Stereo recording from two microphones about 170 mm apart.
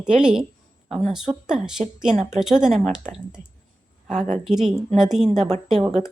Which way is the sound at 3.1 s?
45° right (ahead or behind).